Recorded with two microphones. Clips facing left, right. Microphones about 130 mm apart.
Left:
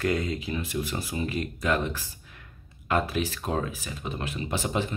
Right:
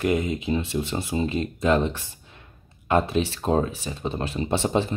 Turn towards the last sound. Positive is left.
turn(degrees=-30)  # may be behind; listen again after turning